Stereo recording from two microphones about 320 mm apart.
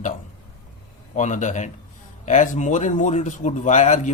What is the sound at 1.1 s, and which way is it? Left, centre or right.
Speech, left.